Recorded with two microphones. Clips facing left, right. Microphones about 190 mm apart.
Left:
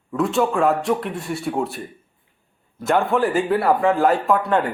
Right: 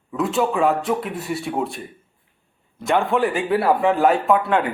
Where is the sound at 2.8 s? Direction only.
Centre (ahead or behind).